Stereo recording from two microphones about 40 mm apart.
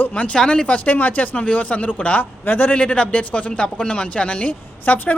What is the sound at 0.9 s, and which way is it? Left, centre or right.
A man's voice, left.